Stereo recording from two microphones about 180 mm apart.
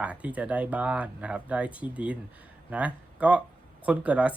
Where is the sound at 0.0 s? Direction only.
5° right (ahead or behind).